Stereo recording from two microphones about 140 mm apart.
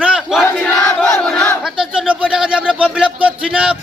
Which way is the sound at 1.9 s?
5° right (ahead or behind).